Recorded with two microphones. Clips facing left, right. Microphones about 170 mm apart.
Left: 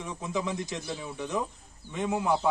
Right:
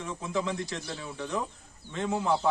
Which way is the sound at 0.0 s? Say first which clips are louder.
Right 1 dB; 15° left (ahead or behind).